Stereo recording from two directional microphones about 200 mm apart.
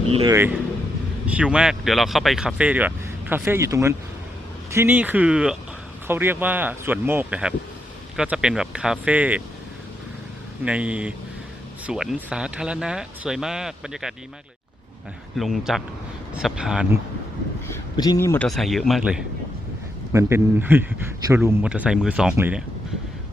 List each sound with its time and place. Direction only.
0.3 s speech: 10° right (ahead or behind)
10.6 s speech: 5° right (ahead or behind)
15.4 s speech: centre (ahead or behind)
17.9 s speech: 20° left (ahead or behind)
18.4 s speech: centre (ahead or behind)